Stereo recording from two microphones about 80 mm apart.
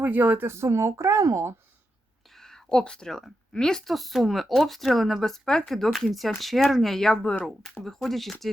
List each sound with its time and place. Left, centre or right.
0.0 s speech: right
2.3 s a woman's voice: centre